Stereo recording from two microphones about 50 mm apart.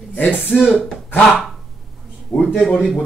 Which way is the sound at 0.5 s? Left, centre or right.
Centre.